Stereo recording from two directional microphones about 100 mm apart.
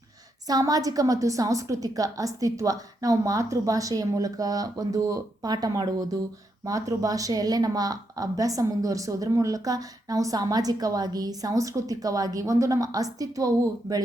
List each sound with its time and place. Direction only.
0.4 s a woman's voice: 40° right (ahead or behind)